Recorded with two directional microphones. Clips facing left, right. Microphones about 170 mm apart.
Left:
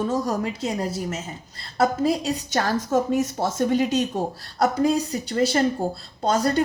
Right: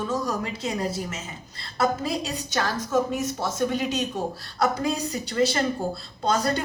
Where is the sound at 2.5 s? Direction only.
40° left (ahead or behind).